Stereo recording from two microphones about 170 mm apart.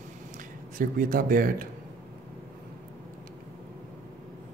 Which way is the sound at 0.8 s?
55° right (ahead or behind).